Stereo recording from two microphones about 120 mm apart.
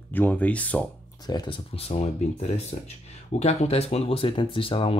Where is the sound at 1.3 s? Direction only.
35° left (ahead or behind).